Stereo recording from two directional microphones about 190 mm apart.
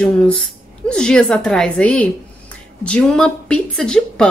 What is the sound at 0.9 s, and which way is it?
A woman's voice, 5° left (ahead or behind).